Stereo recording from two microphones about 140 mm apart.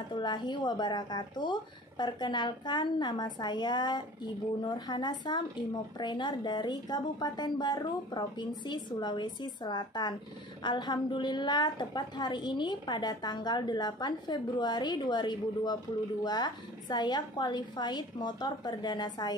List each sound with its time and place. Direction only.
0.1 s a woman's voice: 35° left (ahead or behind)